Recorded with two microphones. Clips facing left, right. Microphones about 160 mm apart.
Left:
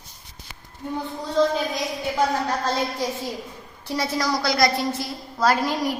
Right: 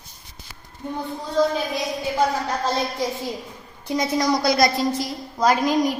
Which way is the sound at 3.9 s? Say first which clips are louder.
Right 3 dB; 15° right (ahead or behind).